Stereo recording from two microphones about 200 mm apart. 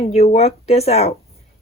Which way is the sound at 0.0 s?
30° left (ahead or behind).